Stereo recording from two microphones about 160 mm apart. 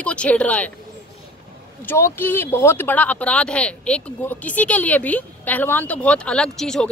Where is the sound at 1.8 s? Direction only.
15° left (ahead or behind).